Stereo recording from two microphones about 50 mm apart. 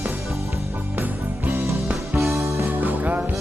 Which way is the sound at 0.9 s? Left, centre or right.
Right.